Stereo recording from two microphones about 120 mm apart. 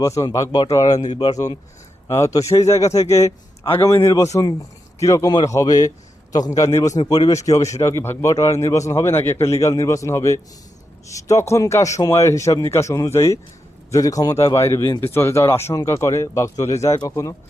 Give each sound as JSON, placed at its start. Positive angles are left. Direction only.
{"t": 0.0, "sound": "speech", "side_deg": 30}